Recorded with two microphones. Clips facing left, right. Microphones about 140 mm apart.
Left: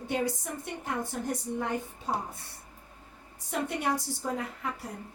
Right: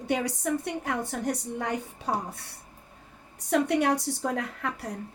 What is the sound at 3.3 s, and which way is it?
A woman's voice, 75° right (ahead or behind).